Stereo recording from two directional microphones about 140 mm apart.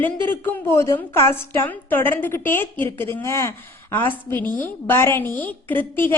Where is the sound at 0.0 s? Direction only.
15° left (ahead or behind).